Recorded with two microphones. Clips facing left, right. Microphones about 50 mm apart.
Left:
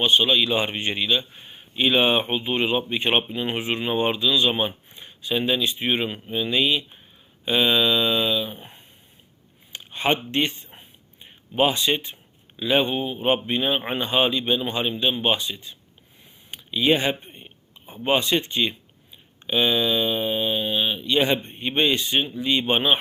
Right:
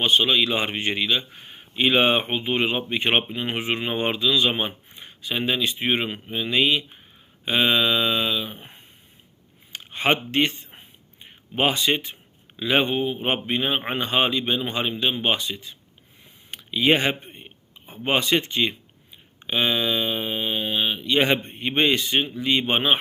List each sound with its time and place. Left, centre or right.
0.3 s speech: right
9.8 s speech: right